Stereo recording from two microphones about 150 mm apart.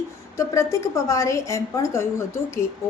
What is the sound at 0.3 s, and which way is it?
A woman's voice, 20° left (ahead or behind).